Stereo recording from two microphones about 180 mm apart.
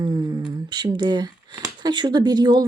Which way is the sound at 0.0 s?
25° right (ahead or behind).